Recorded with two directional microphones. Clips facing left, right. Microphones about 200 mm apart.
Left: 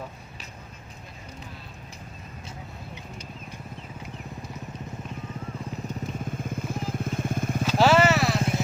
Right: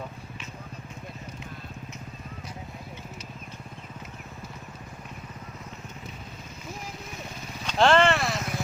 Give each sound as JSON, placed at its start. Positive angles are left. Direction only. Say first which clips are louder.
{"t": 6.1, "sound": "vehicle", "louder": "left 11 dB", "side_deg": 50}
{"t": 7.6, "sound": "vehicle", "louder": "left 1 dB", "side_deg": 5}
{"t": 8.4, "sound": "a sound", "louder": "left 5 dB", "side_deg": 25}